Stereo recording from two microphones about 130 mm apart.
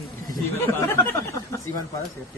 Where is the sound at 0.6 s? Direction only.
15° left (ahead or behind).